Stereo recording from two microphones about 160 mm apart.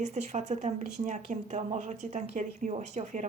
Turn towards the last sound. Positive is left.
turn(degrees=-50)  # may be behind; listen again after turning